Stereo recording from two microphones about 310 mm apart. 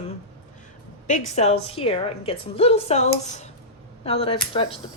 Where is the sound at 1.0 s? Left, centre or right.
Left.